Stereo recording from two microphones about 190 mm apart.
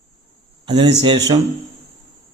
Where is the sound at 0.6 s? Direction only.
25° right (ahead or behind).